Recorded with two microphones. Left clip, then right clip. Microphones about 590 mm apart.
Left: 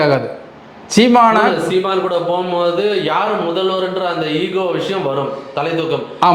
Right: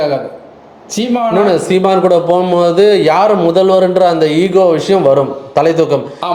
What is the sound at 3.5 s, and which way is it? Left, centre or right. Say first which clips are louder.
Speech: right 8 dB; right.